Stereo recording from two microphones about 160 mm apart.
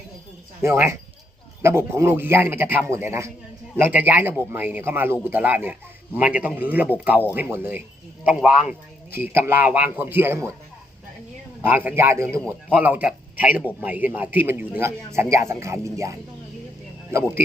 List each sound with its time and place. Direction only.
0.6 s a man's voice: 15° right (ahead or behind)
11.6 s a man's voice: 10° right (ahead or behind)